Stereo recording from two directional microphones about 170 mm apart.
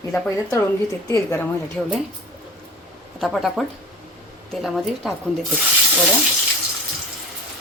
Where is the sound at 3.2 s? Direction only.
Centre (ahead or behind).